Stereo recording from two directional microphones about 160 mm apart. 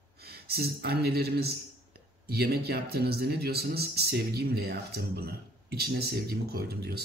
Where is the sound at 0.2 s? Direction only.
75° right (ahead or behind).